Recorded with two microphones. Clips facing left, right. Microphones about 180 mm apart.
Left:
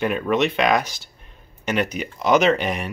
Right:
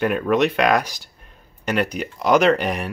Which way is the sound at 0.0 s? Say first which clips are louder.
Right 2 dB; centre (ahead or behind).